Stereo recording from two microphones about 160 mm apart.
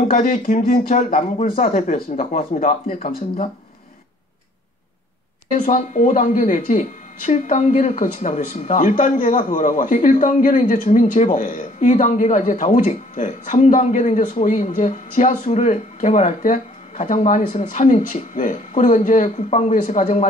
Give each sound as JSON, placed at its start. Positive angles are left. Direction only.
{"t": 0.1, "sound": "speech", "side_deg": 60}
{"t": 5.5, "sound": "speech", "side_deg": 55}